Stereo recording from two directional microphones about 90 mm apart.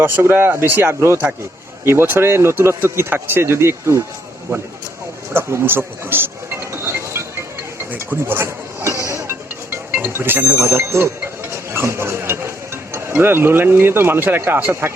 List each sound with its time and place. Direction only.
0.0 s speech: 25° right (ahead or behind)
5.3 s a sound: 25° right (ahead or behind)
7.9 s speech: 25° right (ahead or behind)
9.0 s music: 35° right (ahead or behind)
10.0 s speech: 25° right (ahead or behind)